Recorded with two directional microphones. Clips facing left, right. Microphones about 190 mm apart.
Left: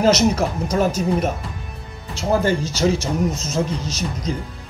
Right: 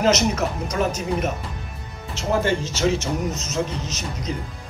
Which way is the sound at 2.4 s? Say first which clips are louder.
Left 3 dB; 35° left (ahead or behind).